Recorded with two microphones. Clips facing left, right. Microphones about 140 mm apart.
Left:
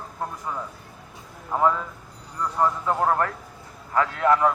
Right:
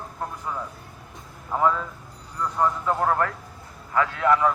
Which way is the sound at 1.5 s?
10° left (ahead or behind).